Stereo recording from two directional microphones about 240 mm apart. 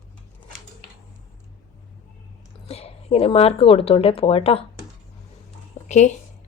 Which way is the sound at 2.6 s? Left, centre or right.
Left.